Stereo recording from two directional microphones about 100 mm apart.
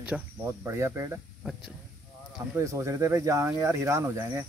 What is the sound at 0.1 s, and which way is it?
Speech, 10° right (ahead or behind).